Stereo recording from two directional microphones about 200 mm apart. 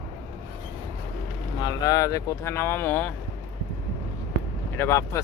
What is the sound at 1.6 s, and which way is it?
Speech, 20° left (ahead or behind).